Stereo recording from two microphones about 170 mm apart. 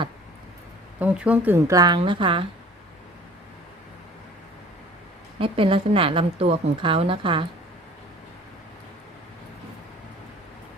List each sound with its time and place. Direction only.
0.9 s speech: 10° right (ahead or behind); by 2.5 s 30° right (ahead or behind)
5.4 s a woman's voice: 30° right (ahead or behind)